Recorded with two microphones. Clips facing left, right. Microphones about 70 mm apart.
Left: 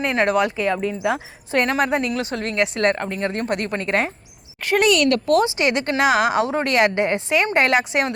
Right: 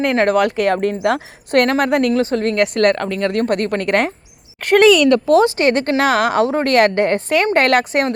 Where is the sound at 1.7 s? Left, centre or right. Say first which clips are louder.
Right 5 dB; right.